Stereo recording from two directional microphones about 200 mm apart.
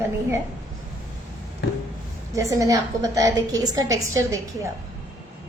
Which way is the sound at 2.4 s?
15° right (ahead or behind).